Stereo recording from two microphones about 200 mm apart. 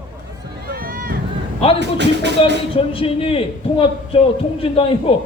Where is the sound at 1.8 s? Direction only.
60° right (ahead or behind).